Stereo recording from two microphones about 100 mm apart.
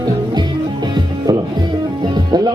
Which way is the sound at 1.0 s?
45° right (ahead or behind).